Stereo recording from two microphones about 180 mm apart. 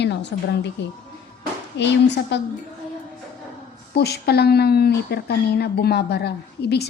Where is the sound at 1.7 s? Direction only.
75° left (ahead or behind).